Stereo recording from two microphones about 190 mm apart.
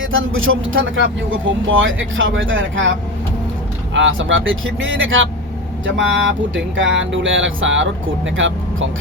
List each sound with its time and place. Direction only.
0.0 s speech: 90° right
3.9 s speech: 85° right